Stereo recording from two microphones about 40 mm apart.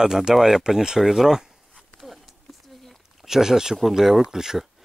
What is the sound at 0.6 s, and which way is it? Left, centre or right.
Speech, centre.